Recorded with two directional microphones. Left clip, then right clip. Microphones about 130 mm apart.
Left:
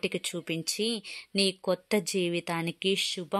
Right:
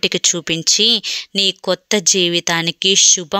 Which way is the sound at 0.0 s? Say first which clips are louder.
Right 16 dB; 35° right (ahead or behind).